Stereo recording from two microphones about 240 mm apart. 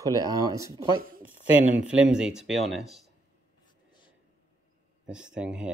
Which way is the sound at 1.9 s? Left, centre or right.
Centre.